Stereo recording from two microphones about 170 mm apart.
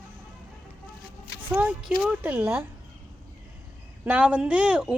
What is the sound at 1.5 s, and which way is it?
A woman's voice, 10° right (ahead or behind).